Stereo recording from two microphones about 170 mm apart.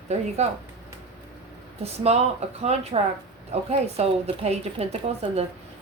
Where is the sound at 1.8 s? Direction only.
40° right (ahead or behind).